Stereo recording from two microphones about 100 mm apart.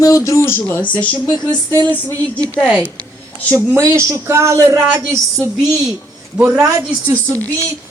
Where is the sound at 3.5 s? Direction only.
30° right (ahead or behind).